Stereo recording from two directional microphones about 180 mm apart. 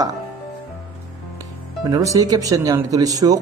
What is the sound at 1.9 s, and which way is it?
Speech, 20° right (ahead or behind).